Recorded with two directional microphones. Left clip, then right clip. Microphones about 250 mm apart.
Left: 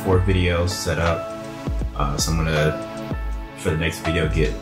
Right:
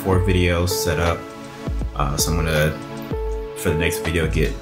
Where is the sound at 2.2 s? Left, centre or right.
Right.